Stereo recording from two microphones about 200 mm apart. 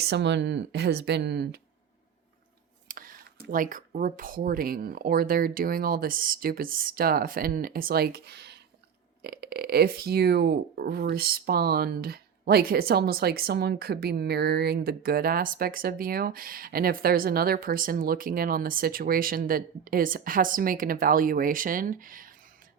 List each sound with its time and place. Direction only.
0.0 s speech: 60° right (ahead or behind)
2.9 s a sound: 45° right (ahead or behind)
3.5 s speech: 40° right (ahead or behind)